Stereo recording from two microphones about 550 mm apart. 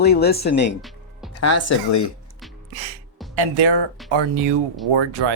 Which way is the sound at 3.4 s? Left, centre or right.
Right.